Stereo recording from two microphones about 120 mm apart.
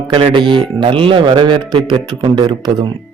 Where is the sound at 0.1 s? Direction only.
40° right (ahead or behind).